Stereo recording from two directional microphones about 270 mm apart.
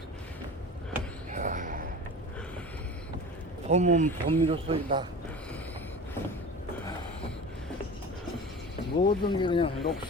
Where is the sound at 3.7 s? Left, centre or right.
Right.